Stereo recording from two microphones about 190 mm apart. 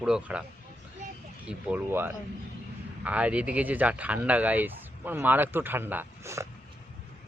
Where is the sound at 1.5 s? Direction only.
5° right (ahead or behind).